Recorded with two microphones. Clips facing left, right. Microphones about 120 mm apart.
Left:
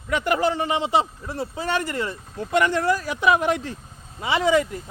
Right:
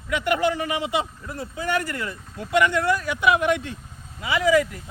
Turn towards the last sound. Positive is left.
turn(degrees=25)  # may be behind; listen again after turning